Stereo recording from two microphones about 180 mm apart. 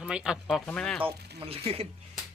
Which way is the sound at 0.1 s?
Centre (ahead or behind).